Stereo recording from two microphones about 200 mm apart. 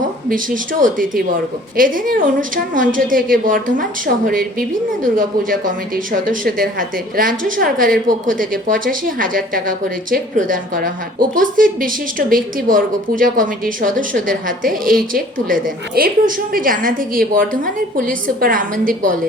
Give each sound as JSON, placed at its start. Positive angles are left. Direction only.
{"t": 0.3, "sound": "a woman's voice", "side_deg": -40}